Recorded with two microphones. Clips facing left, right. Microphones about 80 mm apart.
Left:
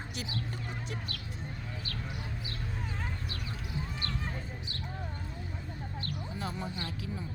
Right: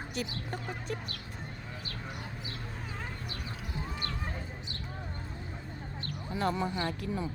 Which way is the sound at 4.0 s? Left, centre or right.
Centre.